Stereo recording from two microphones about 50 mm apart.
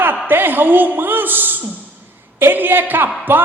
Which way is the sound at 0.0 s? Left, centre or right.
Right.